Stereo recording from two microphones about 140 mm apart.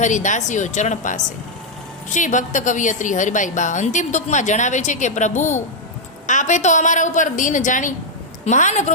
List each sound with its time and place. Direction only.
0.0 s a woman's voice: 60° left (ahead or behind)